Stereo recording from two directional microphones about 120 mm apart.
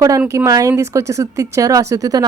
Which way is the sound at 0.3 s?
25° right (ahead or behind).